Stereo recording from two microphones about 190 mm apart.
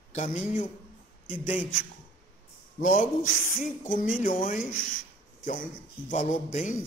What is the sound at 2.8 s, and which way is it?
Speech, 45° left (ahead or behind).